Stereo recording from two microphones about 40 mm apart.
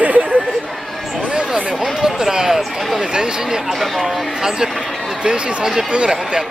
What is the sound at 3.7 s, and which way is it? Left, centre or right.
Speech, centre.